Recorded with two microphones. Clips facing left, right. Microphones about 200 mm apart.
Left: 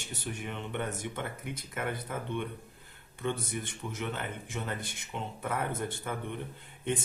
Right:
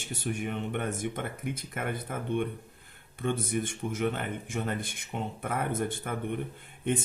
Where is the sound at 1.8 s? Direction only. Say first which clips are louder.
Left 2 dB; 50° right (ahead or behind).